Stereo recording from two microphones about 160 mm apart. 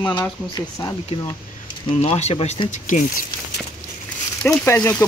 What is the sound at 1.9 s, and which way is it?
Speech, 40° left (ahead or behind).